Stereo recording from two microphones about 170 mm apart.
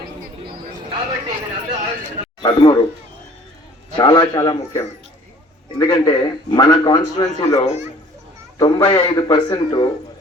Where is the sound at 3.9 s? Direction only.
30° left (ahead or behind).